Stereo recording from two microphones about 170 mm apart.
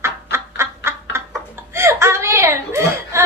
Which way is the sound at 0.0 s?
15° right (ahead or behind).